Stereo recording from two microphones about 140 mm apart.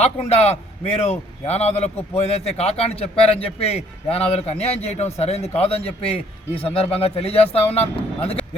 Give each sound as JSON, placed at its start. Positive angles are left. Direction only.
{"t": 0.0, "sound": "a man's voice", "side_deg": 50}